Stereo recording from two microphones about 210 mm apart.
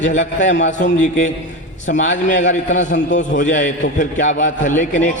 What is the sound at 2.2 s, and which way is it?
A man's voice, 35° left (ahead or behind).